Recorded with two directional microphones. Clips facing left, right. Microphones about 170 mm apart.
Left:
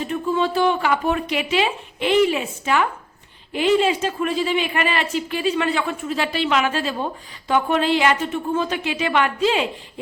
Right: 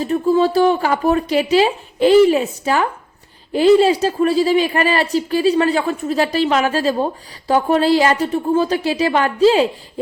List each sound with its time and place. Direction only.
0.0 s speech: 40° right (ahead or behind)